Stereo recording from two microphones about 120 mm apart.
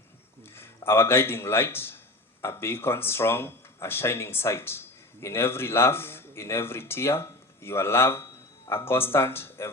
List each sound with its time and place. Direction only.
0.4 s a man's voice: 20° left (ahead or behind)